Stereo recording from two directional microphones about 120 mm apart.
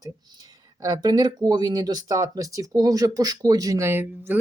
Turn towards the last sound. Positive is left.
turn(degrees=-20)  # may be behind; listen again after turning